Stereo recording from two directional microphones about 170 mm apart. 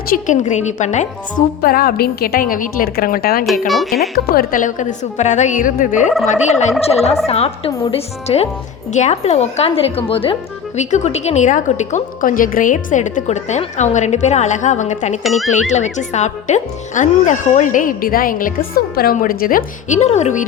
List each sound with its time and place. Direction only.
0.3 s a woman's voice: 45° left (ahead or behind)
1.6 s a woman's voice: 60° left (ahead or behind)
3.7 s speech: centre (ahead or behind)
4.1 s a woman's voice: 65° left (ahead or behind); by 15.2 s 45° left (ahead or behind)
15.2 s speech: centre (ahead or behind)
15.7 s a woman's voice: 45° left (ahead or behind)
20.0 s a woman's voice: 40° left (ahead or behind)